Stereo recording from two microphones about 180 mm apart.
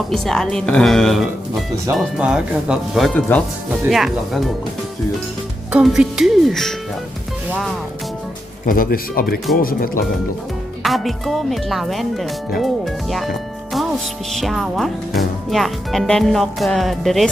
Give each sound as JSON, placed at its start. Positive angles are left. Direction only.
{"t": 0.1, "sound": "speech", "side_deg": 0}
{"t": 5.7, "sound": "speech", "side_deg": -5}
{"t": 8.6, "sound": "speech", "side_deg": 50}
{"t": 10.8, "sound": "speech", "side_deg": 0}
{"t": 14.3, "sound": "speech", "side_deg": 0}